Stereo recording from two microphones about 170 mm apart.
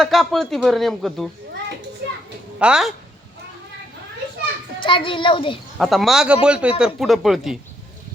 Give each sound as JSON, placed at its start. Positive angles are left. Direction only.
{"t": 0.0, "sound": "a man's voice", "side_deg": 0}
{"t": 2.6, "sound": "a man's voice", "side_deg": -5}
{"t": 4.8, "sound": "a child's voice", "side_deg": 30}
{"t": 5.8, "sound": "a man's voice", "side_deg": 0}